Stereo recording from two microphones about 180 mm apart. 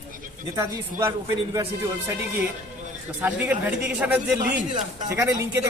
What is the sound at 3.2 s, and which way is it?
Speech, 10° right (ahead or behind).